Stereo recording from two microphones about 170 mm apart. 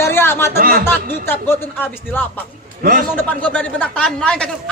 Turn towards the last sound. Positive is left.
turn(degrees=5)  # may be behind; listen again after turning